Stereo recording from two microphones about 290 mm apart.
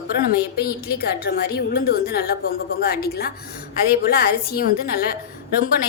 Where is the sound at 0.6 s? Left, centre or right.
Left.